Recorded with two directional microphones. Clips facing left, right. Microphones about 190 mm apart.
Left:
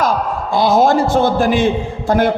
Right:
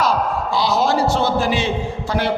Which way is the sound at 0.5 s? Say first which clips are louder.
Left 7 dB; 50° left (ahead or behind).